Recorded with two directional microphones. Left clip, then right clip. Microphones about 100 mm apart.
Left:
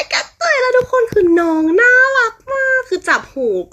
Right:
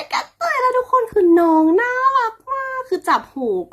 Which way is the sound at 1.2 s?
35° right (ahead or behind).